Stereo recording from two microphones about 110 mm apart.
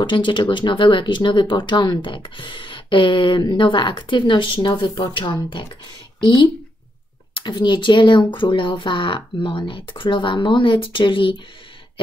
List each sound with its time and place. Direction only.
0.0 s speech: 45° left (ahead or behind)
4.8 s speech: 35° left (ahead or behind)
5.1 s speech: 50° left (ahead or behind)